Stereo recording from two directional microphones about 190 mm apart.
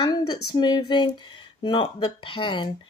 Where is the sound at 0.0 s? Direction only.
20° left (ahead or behind).